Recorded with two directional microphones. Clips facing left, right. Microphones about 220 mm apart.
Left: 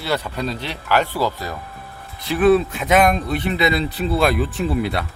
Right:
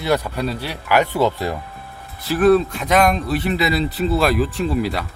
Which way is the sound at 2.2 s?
Centre (ahead or behind).